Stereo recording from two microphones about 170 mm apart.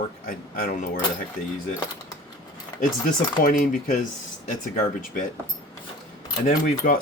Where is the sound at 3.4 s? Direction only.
55° left (ahead or behind).